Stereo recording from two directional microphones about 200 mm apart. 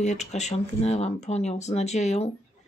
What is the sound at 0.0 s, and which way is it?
A woman's voice, 35° left (ahead or behind).